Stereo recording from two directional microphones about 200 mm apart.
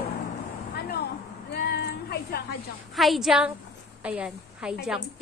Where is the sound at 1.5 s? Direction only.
50° left (ahead or behind).